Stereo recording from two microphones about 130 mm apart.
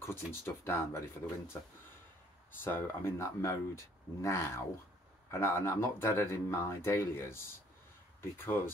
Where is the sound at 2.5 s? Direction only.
20° left (ahead or behind).